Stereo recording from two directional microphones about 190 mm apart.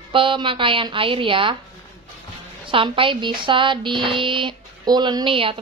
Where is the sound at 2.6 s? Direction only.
25° right (ahead or behind).